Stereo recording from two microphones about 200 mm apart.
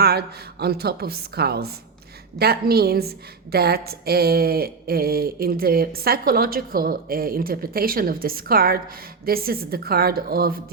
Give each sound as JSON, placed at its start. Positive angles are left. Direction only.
{"t": 0.0, "sound": "speech", "side_deg": -50}